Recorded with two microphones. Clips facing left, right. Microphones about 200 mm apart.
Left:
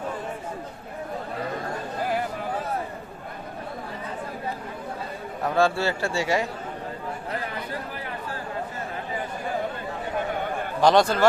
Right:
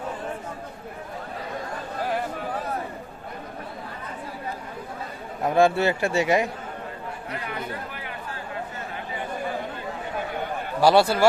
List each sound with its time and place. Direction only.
5.5 s a man's voice: 20° right (ahead or behind)
10.8 s a man's voice: 10° right (ahead or behind)